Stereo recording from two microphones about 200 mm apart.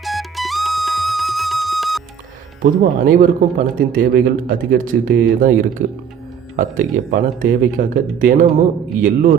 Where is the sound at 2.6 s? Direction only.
45° right (ahead or behind).